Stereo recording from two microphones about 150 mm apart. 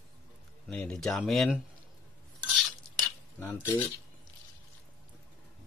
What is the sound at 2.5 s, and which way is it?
Stir, centre (ahead or behind).